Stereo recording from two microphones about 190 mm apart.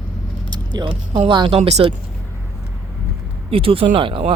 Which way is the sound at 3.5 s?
30° right (ahead or behind).